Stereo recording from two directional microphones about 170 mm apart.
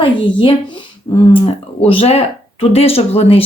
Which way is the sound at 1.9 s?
35° left (ahead or behind).